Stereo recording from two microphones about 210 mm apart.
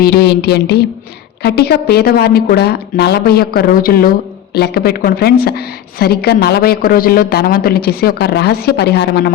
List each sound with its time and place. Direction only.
0.0 s a woman's voice: 50° left (ahead or behind)